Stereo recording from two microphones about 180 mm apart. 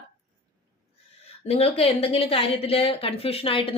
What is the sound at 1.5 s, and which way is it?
A woman's voice, 30° left (ahead or behind).